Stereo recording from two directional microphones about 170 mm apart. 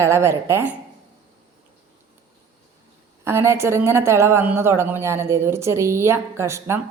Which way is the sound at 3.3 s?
15° right (ahead or behind).